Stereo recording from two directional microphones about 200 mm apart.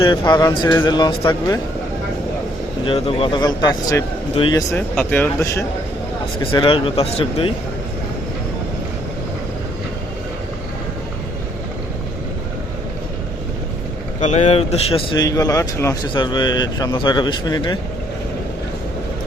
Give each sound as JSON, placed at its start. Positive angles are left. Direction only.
{"t": 0.0, "sound": "speech", "side_deg": 20}
{"t": 2.8, "sound": "speech", "side_deg": 25}
{"t": 4.7, "sound": "speech", "side_deg": 10}
{"t": 6.4, "sound": "speech", "side_deg": 25}
{"t": 14.2, "sound": "speech", "side_deg": 35}